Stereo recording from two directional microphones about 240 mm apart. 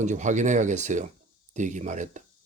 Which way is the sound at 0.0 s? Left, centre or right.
Right.